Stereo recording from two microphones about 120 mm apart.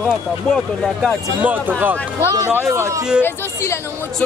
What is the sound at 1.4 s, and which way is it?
Speech, 15° right (ahead or behind).